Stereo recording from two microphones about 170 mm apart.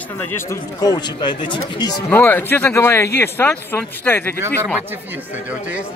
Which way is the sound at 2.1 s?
10° left (ahead or behind).